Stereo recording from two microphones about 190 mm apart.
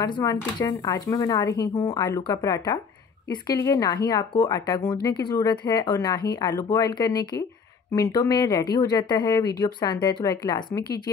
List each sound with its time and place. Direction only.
0.0 s speech: 20° left (ahead or behind)